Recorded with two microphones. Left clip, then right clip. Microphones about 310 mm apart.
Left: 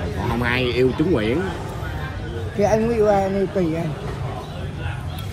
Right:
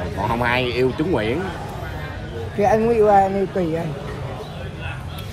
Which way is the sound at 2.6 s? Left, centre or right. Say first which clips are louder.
Right 2 dB; centre.